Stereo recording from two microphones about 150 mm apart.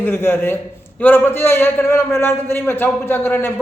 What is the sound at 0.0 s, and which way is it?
A man's voice, 15° left (ahead or behind).